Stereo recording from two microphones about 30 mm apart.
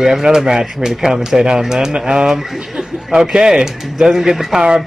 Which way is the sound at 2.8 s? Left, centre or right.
Right.